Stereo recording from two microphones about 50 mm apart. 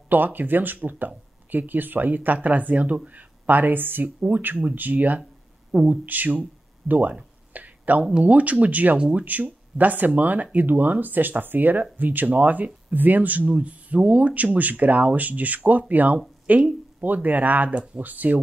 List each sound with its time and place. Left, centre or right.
0.1 s speech: right
7.5 s a sound: right
8.2 s speech: right